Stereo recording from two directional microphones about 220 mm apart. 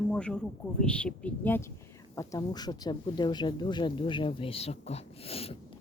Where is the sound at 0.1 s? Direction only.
5° left (ahead or behind).